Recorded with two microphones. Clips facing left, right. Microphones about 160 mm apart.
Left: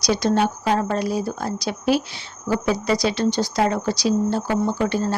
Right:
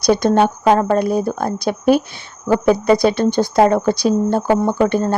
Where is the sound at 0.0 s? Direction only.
55° right (ahead or behind).